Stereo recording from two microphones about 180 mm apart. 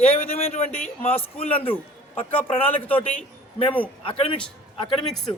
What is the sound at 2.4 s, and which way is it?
Speech, 30° left (ahead or behind).